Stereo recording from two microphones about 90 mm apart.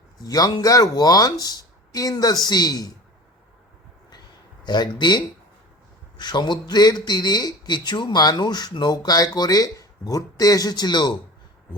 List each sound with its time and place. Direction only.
0.2 s speech: 45° left (ahead or behind)
4.6 s speech: 50° left (ahead or behind)